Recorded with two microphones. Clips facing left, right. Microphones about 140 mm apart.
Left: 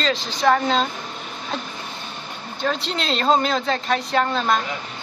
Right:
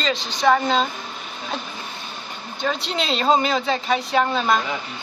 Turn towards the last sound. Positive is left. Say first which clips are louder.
# right 1 dB
turn(degrees=-5)  # may be behind; listen again after turning